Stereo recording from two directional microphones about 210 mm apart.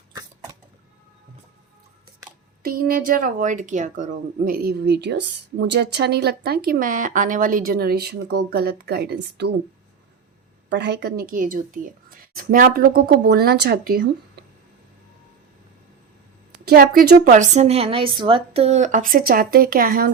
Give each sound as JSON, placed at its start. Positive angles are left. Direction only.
{"t": 2.6, "sound": "a woman's voice", "side_deg": -45}
{"t": 10.7, "sound": "a woman's voice", "side_deg": -55}
{"t": 16.6, "sound": "a woman's voice", "side_deg": -45}